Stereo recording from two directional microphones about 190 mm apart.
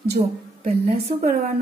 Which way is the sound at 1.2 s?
40° right (ahead or behind).